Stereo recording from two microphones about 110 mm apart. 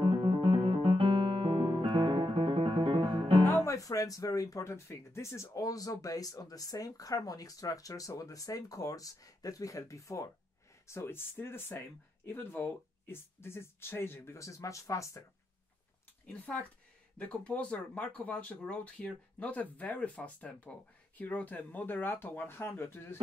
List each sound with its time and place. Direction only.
0.0 s music: 50° right (ahead or behind)
3.4 s speech: 25° left (ahead or behind)
16.3 s speech: 15° left (ahead or behind)